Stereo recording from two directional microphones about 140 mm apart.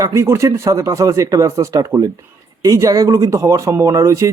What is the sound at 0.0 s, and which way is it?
Speech, 20° right (ahead or behind).